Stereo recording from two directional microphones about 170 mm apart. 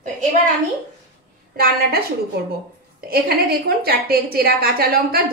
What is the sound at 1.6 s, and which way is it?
Speech, 65° right (ahead or behind).